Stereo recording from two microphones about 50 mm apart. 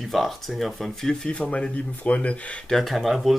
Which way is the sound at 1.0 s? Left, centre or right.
Centre.